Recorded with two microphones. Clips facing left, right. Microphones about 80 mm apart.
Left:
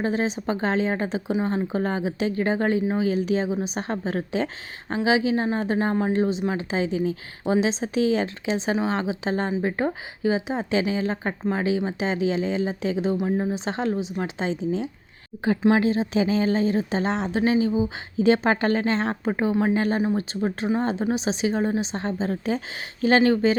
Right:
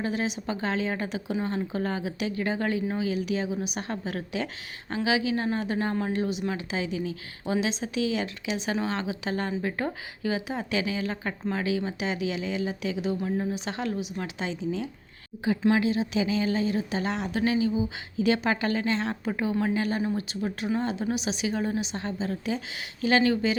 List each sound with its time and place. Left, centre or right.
0.0 s a woman's voice: left